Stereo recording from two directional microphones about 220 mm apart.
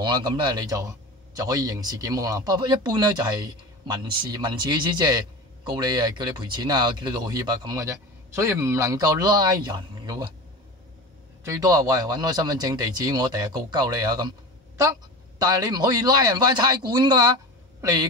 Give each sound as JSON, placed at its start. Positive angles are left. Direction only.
{"t": 0.0, "sound": "speech", "side_deg": -20}
{"t": 11.4, "sound": "speech", "side_deg": -15}